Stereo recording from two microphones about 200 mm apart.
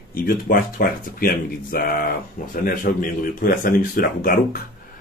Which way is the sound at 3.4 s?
45° left (ahead or behind).